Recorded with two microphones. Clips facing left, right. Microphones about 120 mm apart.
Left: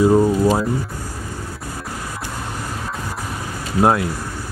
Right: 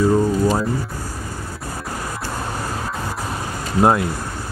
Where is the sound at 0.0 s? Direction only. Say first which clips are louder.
Left 3 dB; 15° left (ahead or behind).